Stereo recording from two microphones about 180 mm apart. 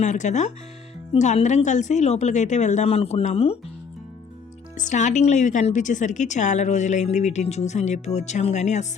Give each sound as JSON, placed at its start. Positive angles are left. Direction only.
{"t": 0.0, "sound": "a woman's voice", "side_deg": 40}
{"t": 4.8, "sound": "a woman's voice", "side_deg": 45}